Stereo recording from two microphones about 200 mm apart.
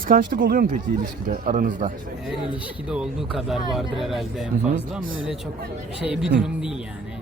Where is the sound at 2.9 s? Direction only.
5° right (ahead or behind).